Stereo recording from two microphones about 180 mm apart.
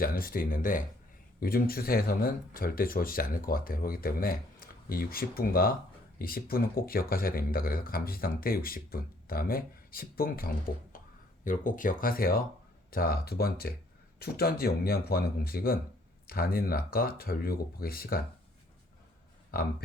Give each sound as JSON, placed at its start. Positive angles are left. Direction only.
{"t": 0.0, "sound": "speech", "side_deg": 55}